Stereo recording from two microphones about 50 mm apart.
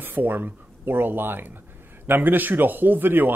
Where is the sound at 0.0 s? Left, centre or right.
Right.